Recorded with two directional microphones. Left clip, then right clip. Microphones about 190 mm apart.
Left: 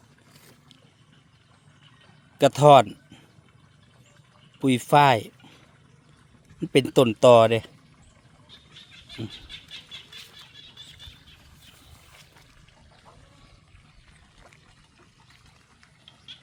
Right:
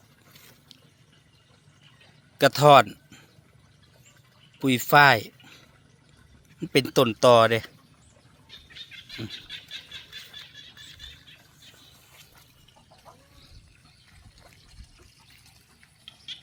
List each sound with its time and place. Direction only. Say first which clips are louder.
2.4 s speech: left 1 dB; 20° left (ahead or behind)
4.6 s speech: right 1 dB; 20° left (ahead or behind)